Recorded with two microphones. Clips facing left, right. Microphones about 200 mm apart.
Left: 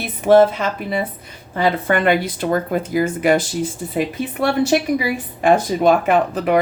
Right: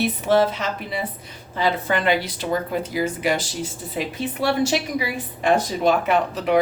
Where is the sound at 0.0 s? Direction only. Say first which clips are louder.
Left 6 dB; 50° left (ahead or behind).